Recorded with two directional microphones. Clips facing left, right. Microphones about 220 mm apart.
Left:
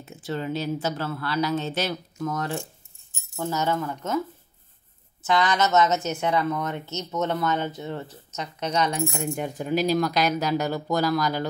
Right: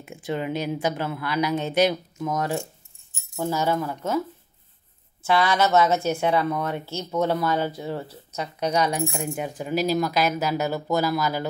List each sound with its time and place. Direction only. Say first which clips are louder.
0.0 s speech: right 2 dB; 15° right (ahead or behind)
5.2 s speech: right 2 dB; 10° right (ahead or behind)